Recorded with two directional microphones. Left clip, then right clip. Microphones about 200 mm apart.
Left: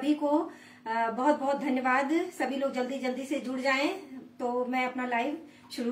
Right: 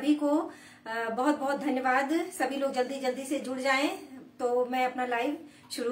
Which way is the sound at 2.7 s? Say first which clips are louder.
Right 2 dB; 15° right (ahead or behind).